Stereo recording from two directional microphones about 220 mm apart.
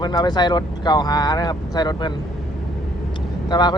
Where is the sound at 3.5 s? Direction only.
20° left (ahead or behind).